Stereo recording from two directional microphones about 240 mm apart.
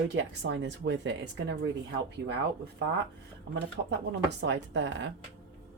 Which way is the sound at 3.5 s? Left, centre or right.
Right.